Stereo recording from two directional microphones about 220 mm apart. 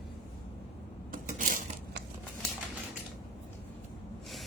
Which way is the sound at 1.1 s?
35° right (ahead or behind).